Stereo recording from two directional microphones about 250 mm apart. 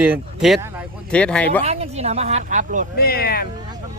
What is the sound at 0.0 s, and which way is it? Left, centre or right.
Speech, centre.